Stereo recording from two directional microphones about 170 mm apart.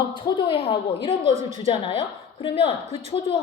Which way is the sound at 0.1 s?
30° left (ahead or behind).